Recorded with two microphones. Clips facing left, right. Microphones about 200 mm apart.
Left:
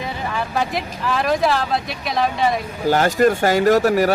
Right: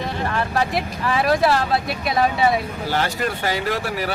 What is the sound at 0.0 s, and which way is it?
Speech, centre (ahead or behind).